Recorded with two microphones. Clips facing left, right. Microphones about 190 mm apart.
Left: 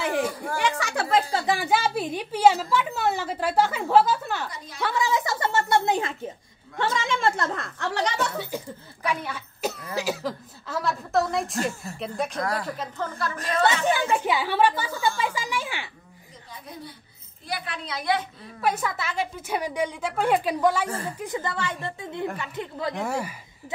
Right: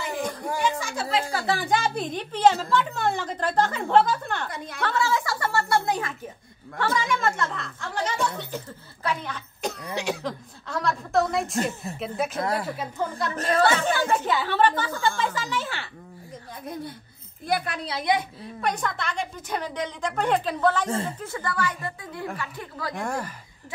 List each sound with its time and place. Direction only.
0.2 s a sound: 5° left (ahead or behind)
0.6 s a sound: 75° left (ahead or behind)
1.3 s a woman's voice: 15° left (ahead or behind)
4.5 s a woman's voice: 55° right (ahead or behind)
4.8 s a sound: 15° left (ahead or behind); by 7.7 s 45° left (ahead or behind)
7.8 s a woman's voice: 75° left (ahead or behind)
8.4 s cough: 10° left (ahead or behind)
12.2 s a woman's voice: 5° right (ahead or behind)
13.4 s speech: 45° right (ahead or behind)
13.8 s a woman's voice: 15° left (ahead or behind)
17.5 s speech: 50° right (ahead or behind)
18.1 s a woman's voice: 20° right (ahead or behind)
18.6 s a woman's voice: 5° left (ahead or behind); by 22.9 s 20° left (ahead or behind)
22.9 s a woman's voice: 5° left (ahead or behind)